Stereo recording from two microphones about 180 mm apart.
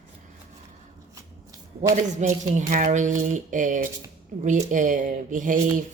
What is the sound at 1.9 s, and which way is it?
Speech, 45° right (ahead or behind).